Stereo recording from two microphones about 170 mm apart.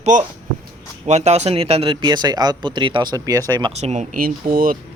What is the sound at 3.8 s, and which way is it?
Speech, 40° right (ahead or behind).